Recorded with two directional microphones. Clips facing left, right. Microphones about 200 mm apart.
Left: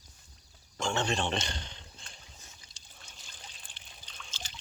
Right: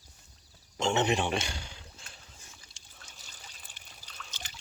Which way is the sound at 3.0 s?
5° right (ahead or behind).